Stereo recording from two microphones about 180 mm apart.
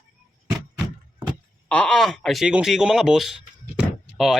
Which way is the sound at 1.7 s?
5° left (ahead or behind).